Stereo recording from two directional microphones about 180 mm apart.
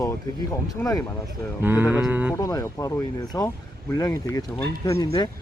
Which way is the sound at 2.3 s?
20° left (ahead or behind).